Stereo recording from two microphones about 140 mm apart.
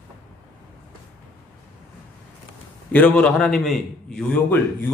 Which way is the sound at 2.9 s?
10° left (ahead or behind).